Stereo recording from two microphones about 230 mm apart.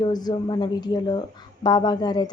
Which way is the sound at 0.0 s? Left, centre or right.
Centre.